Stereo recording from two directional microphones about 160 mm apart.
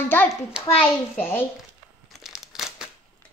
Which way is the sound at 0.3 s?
5° right (ahead or behind).